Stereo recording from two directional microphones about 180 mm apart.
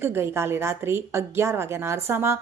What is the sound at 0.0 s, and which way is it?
A woman's voice, 15° right (ahead or behind).